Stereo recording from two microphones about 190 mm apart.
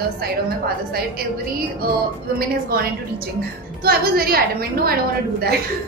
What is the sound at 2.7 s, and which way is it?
A woman's voice, 55° right (ahead or behind).